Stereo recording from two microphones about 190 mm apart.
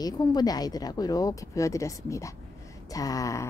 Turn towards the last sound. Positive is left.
turn(degrees=15)  # may be behind; listen again after turning